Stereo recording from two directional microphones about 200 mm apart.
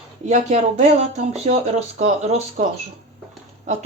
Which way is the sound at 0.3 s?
35° right (ahead or behind).